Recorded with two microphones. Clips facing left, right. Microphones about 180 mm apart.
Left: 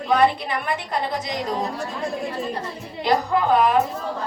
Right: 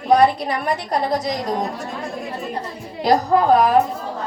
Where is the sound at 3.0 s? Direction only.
40° right (ahead or behind).